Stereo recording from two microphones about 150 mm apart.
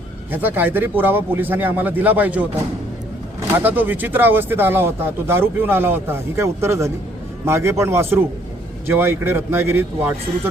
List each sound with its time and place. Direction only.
0.3 s speech: 15° right (ahead or behind)